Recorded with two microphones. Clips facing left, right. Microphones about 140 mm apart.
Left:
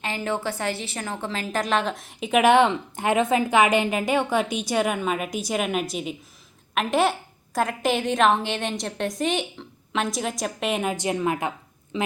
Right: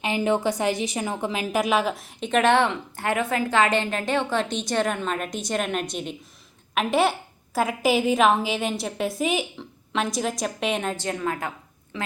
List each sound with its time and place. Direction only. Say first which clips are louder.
0.0 s a woman's voice: right 5 dB; 15° right (ahead or behind); by 10.9 s 5° left (ahead or behind)
10.9 s a woman's voice: left 3 dB; 15° left (ahead or behind)